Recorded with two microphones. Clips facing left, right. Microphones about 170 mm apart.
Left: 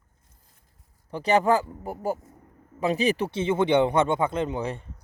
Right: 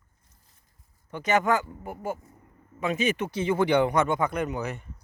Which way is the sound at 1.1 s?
35° left (ahead or behind).